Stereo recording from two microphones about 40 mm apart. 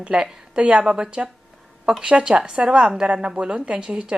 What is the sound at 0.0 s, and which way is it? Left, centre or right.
Speech, right.